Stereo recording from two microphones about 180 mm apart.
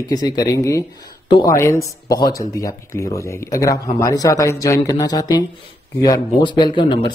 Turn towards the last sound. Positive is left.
turn(degrees=25)  # may be behind; listen again after turning